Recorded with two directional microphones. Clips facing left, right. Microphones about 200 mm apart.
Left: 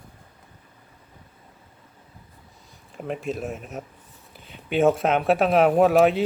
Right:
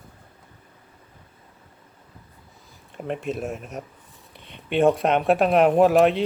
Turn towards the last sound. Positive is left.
turn(degrees=0)  # may be behind; listen again after turning